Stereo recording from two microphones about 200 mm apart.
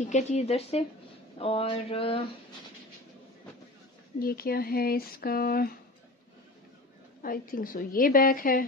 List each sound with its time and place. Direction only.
0.0 s speech: 35° left (ahead or behind)
1.4 s a sound: 30° left (ahead or behind)
4.2 s speech: 50° left (ahead or behind)
7.2 s speech: 45° left (ahead or behind)